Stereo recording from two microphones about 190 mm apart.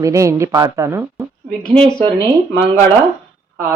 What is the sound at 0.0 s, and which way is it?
A woman's voice, 15° right (ahead or behind).